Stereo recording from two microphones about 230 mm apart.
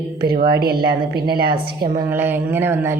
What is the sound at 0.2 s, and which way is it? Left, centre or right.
Speech, right.